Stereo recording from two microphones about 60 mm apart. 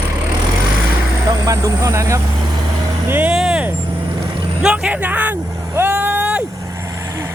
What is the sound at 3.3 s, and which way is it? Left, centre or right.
Vehicle, centre.